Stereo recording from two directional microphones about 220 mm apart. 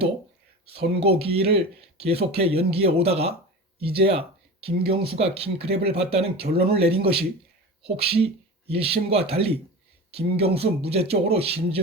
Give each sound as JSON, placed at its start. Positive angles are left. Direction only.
{"t": 0.9, "sound": "speech", "side_deg": -25}